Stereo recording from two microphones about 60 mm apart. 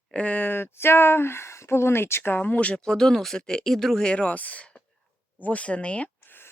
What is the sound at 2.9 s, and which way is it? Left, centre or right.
Speech, centre.